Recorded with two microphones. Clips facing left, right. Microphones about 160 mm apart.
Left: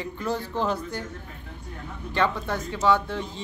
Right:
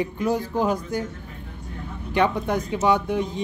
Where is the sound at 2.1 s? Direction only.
15° right (ahead or behind).